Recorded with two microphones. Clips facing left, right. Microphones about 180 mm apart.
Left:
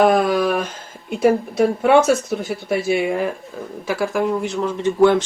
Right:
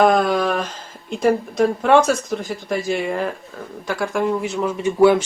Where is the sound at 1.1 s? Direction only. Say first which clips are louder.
Left 2 dB; 5° left (ahead or behind).